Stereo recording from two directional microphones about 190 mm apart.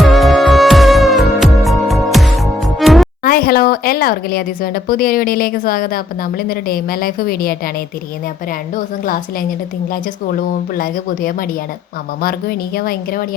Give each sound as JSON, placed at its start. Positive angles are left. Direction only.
{"t": 0.0, "sound": "music", "side_deg": 0}
{"t": 3.2, "sound": "speech", "side_deg": 50}
{"t": 8.7, "sound": "speech", "side_deg": 45}